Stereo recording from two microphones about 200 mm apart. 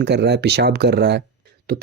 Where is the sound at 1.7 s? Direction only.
45° right (ahead or behind).